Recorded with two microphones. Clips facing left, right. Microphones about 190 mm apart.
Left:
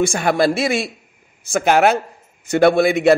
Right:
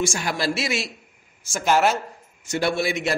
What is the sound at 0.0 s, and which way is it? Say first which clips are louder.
A man's voice: left 8 dB; 60° left (ahead or behind).